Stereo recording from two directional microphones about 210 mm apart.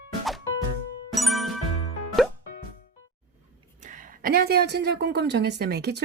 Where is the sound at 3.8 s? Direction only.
40° right (ahead or behind).